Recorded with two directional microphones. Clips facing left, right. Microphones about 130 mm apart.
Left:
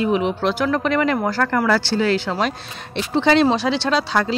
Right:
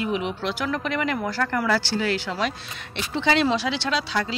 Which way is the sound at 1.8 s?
30° left (ahead or behind).